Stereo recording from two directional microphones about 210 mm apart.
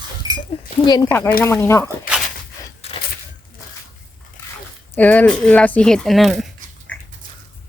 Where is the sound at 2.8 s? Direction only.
30° left (ahead or behind).